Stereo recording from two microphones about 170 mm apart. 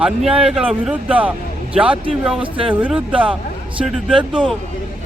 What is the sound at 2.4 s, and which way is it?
Speech, 30° right (ahead or behind).